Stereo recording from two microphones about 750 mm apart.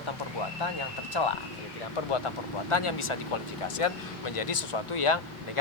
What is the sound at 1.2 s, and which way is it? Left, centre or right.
Speech, left.